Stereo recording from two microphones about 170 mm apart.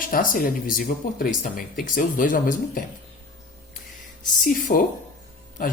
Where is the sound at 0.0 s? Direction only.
55° left (ahead or behind).